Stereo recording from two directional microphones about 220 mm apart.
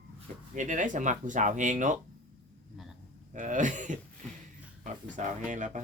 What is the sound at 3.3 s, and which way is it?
Speech, 35° right (ahead or behind).